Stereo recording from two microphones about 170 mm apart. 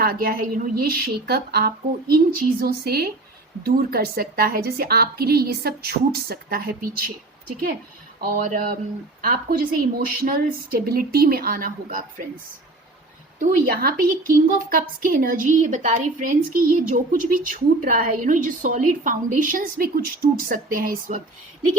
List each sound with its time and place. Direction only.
0.0 s a woman's voice: 65° right (ahead or behind)
8.2 s a woman's voice: 55° right (ahead or behind)
13.4 s a woman's voice: 60° right (ahead or behind)